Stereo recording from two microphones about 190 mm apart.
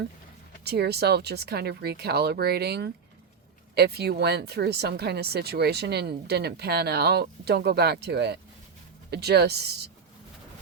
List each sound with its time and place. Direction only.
0.6 s speech: 60° right (ahead or behind)